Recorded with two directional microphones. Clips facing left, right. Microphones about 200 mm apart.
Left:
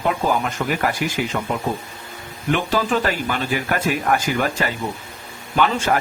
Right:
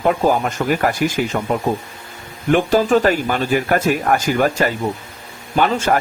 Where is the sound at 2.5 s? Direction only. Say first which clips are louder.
Right 6 dB; 45° right (ahead or behind).